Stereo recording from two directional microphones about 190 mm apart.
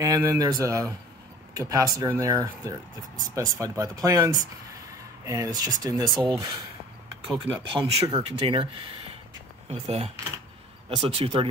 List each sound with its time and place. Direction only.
0.0 s speech: 15° right (ahead or behind)